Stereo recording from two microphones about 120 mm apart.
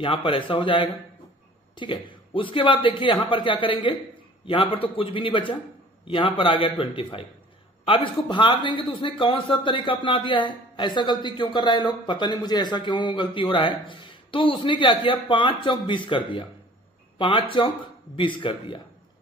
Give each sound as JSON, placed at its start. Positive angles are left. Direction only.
{"t": 0.0, "sound": "a man's voice", "side_deg": 45}
{"t": 17.2, "sound": "a man's voice", "side_deg": 45}